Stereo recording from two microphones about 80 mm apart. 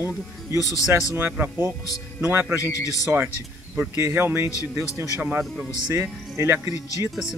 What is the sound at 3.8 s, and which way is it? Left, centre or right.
Speech, right.